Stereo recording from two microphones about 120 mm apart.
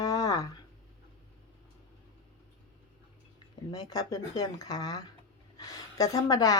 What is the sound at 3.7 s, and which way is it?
Speech, 30° left (ahead or behind).